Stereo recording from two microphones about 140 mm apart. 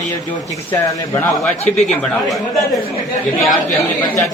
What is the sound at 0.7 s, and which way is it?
Speech, 10° left (ahead or behind).